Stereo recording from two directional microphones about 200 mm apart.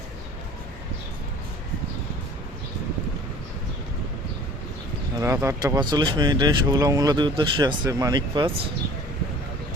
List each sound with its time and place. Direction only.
5.2 s speech: 15° right (ahead or behind)